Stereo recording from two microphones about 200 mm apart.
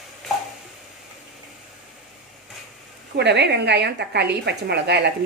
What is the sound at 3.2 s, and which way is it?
A woman's voice, 60° right (ahead or behind).